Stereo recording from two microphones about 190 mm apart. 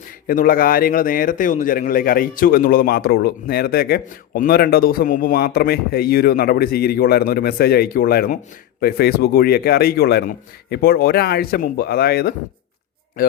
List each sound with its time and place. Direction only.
0.3 s a man's voice: 50° left (ahead or behind)